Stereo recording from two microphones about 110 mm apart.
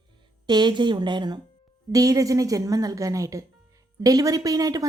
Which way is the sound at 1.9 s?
30° right (ahead or behind).